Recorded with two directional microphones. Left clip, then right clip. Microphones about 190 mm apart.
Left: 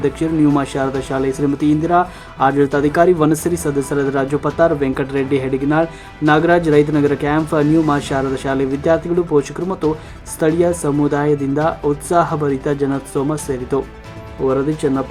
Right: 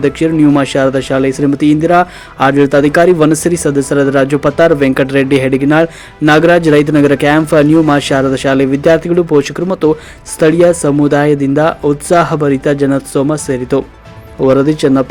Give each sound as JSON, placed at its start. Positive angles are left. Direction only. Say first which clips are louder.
{"t": 0.0, "sound": "speech", "louder": "right 6 dB", "side_deg": -10}